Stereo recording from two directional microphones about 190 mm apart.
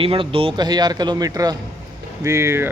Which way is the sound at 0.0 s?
30° right (ahead or behind).